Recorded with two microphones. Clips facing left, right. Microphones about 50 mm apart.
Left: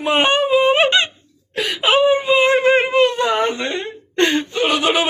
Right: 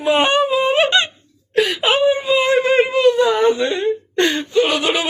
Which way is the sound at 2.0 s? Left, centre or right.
Left.